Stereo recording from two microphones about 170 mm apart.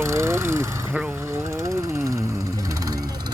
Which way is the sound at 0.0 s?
15° right (ahead or behind).